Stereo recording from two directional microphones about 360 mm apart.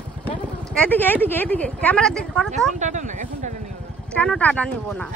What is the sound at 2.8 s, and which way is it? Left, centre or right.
Speech, right.